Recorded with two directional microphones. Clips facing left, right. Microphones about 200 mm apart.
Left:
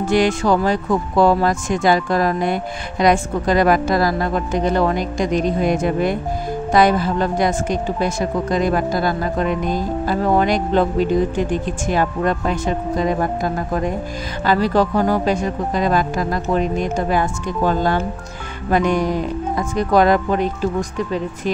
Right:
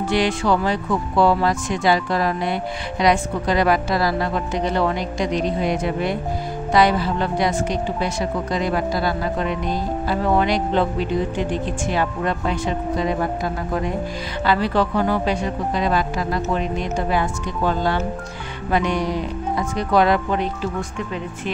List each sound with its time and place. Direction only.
0.1 s speech: 45° left (ahead or behind)